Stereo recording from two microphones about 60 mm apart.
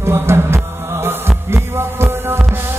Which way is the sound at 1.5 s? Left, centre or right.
Right.